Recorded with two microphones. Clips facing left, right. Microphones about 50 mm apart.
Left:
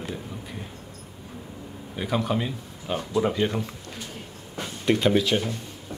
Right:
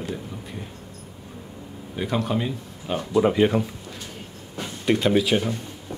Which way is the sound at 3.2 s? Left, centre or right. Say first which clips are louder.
Right 6 dB; centre.